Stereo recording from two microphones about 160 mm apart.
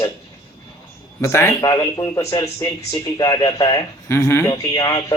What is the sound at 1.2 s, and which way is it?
Speech, 15° left (ahead or behind).